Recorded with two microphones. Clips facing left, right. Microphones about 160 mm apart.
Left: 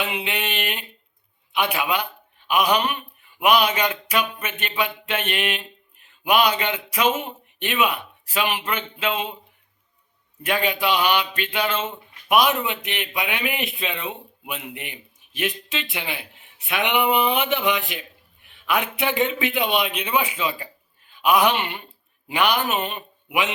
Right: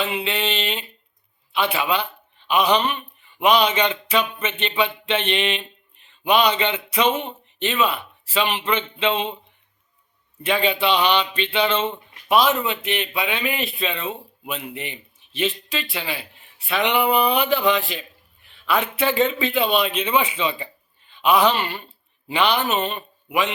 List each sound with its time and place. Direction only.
0.0 s a sound: 15° left (ahead or behind)
1.5 s a man's voice: 15° left (ahead or behind)
10.4 s a man's voice: 10° left (ahead or behind)